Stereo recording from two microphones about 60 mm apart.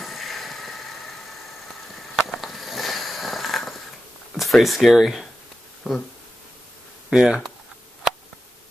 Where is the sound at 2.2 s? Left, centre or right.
Centre.